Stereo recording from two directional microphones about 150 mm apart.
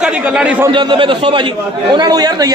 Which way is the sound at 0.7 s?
35° right (ahead or behind).